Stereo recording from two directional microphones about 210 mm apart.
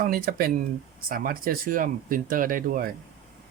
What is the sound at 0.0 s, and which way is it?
Speech, 45° right (ahead or behind).